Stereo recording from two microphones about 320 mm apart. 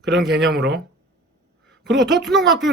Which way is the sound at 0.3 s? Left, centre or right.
Right.